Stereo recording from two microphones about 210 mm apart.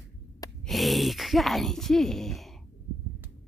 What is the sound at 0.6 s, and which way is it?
Speech, centre (ahead or behind).